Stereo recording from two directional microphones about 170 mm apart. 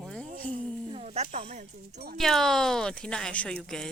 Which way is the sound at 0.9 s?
40° right (ahead or behind).